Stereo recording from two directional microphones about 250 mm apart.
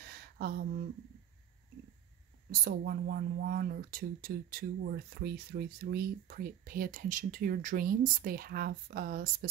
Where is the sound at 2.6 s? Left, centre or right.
Right.